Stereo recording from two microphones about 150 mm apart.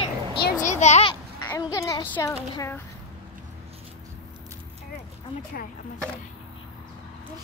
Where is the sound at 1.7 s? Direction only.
20° left (ahead or behind).